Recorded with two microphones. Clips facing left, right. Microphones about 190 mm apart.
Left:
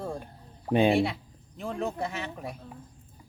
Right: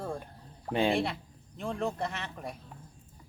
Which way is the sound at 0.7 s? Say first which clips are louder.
Left 5 dB; 20° left (ahead or behind).